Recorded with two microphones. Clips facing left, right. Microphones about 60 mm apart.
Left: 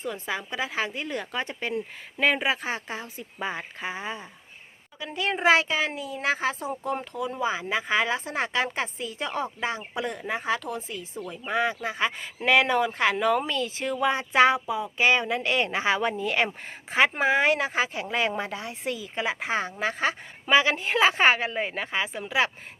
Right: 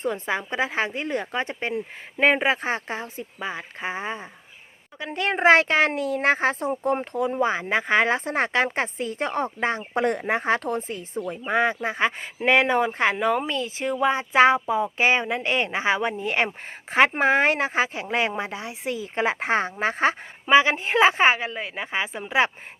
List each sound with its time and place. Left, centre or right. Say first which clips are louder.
0.0 s a woman's voice: right 5 dB; right
4.9 s a woman's voice: right 3 dB; right
13.1 s a woman's voice: right 1 dB; centre
16.9 s a woman's voice: right 3 dB; right
19.0 s a woman's voice: right 7 dB; right